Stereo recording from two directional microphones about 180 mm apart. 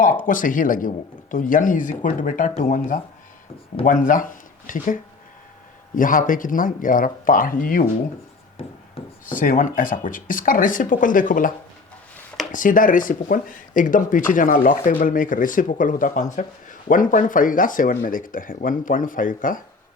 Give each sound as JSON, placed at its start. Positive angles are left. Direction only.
{"t": 0.0, "sound": "speech", "side_deg": 45}
{"t": 6.0, "sound": "speech", "side_deg": 50}
{"t": 9.2, "sound": "speech", "side_deg": 50}